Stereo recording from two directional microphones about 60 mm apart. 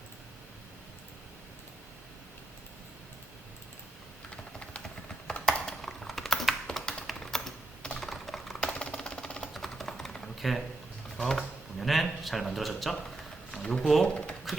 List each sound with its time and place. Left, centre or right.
4.3 s typing: centre
7.9 s computer keyboard: centre
8.6 s a sound: centre
9.5 s typing: centre
11.2 s speech: centre
13.6 s speech: centre
14.0 s typing: centre